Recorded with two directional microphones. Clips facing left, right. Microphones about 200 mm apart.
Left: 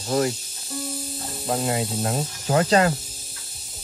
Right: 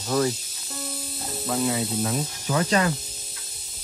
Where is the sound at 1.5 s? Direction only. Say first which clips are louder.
Left 1 dB; 50° left (ahead or behind).